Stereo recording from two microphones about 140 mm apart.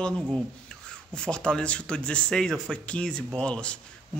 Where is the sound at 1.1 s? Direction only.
5° left (ahead or behind).